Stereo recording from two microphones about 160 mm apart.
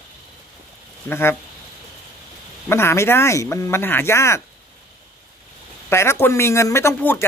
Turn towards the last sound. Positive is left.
turn(degrees=15)  # may be behind; listen again after turning